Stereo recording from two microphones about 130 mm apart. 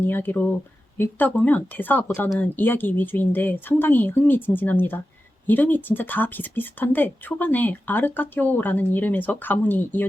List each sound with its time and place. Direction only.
0.0 s speech: 15° left (ahead or behind)